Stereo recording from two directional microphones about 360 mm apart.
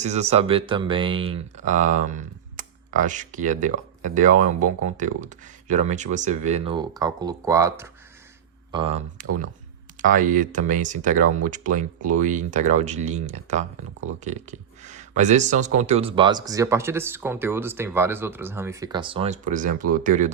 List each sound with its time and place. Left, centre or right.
0.0 s speech: centre